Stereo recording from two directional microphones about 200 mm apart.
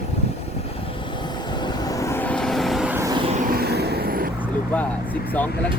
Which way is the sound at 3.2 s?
30° right (ahead or behind).